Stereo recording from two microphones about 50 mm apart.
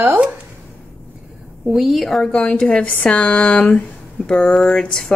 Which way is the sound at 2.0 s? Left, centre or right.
Centre.